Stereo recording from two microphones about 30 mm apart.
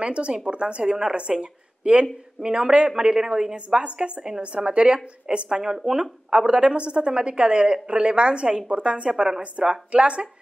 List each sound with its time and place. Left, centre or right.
0.0 s a woman's voice: right; by 3.5 s centre
3.5 s a woman's voice: right
5.6 s speech: centre
6.4 s a woman's voice: right